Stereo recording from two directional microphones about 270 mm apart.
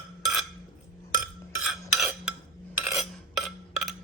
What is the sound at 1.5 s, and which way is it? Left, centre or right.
Stir, centre.